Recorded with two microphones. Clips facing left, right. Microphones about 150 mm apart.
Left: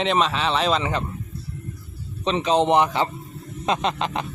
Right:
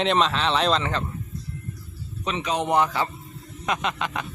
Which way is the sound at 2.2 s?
30° left (ahead or behind).